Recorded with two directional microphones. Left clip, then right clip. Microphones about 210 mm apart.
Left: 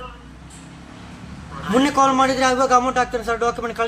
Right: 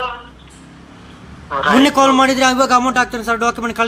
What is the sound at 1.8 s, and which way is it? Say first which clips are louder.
A man's voice: right 3 dB; 35° right (ahead or behind).